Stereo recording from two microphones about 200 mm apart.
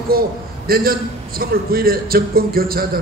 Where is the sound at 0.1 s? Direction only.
45° right (ahead or behind).